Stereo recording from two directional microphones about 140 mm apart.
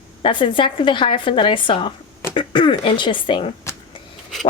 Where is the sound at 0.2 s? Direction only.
40° left (ahead or behind).